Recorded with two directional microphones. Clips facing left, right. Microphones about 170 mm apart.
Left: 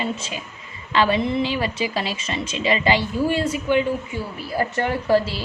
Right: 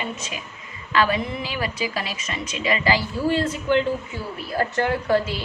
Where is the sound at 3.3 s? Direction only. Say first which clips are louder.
Right 2 dB; 10° left (ahead or behind).